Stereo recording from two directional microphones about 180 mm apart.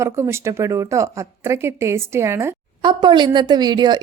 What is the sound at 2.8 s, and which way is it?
A woman's voice, 25° right (ahead or behind).